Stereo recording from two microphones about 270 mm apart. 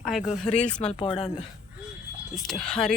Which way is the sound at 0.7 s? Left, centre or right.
Left.